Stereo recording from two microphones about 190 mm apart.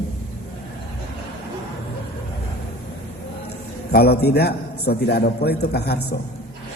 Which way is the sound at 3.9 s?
60° left (ahead or behind).